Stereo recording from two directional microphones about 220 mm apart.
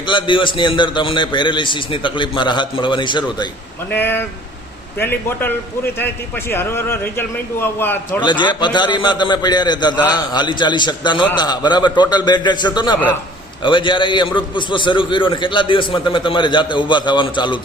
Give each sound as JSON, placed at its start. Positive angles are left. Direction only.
{"t": 0.0, "sound": "a man's voice", "side_deg": 20}
{"t": 3.8, "sound": "a man's voice", "side_deg": 10}
{"t": 8.2, "sound": "a man's voice", "side_deg": 20}